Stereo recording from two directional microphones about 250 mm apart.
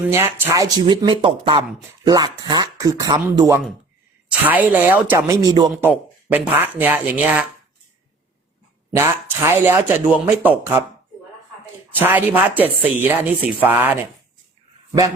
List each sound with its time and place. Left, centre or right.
0.0 s speech: centre
5.6 s speech: centre
9.0 s speech: centre
11.9 s speech: centre